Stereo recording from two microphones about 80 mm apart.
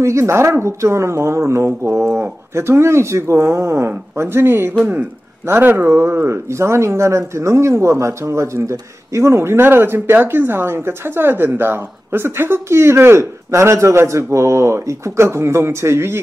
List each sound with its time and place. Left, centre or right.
0.0 s speech: right